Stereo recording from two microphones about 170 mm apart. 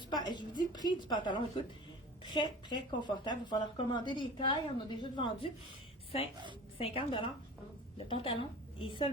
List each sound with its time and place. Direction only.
0.1 s a woman's voice: 25° left (ahead or behind)
6.7 s a woman's voice: 35° left (ahead or behind)